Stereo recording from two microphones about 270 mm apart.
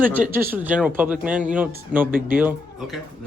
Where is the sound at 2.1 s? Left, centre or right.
Right.